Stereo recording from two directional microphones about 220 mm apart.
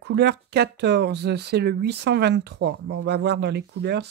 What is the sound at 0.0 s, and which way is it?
Speech, 50° right (ahead or behind).